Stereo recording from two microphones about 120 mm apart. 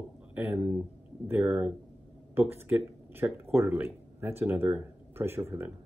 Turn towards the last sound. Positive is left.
turn(degrees=-20)  # may be behind; listen again after turning